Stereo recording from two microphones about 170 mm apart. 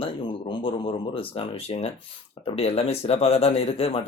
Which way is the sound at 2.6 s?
35° left (ahead or behind).